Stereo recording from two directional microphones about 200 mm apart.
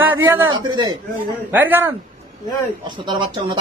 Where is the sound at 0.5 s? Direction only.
25° right (ahead or behind).